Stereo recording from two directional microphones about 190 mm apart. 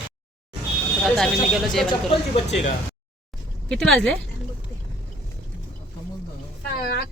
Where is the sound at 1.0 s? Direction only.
Centre (ahead or behind).